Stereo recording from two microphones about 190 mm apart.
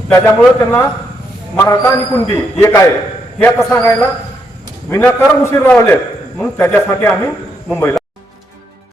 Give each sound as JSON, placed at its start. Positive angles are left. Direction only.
{"t": 0.1, "sound": "a man's voice", "side_deg": 10}